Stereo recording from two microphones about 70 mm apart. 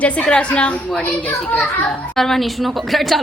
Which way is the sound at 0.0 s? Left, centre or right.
Centre.